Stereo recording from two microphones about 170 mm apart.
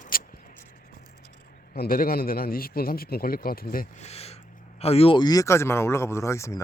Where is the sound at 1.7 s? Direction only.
60° left (ahead or behind).